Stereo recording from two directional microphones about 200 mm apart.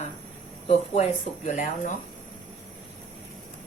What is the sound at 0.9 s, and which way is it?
Speech, 35° left (ahead or behind).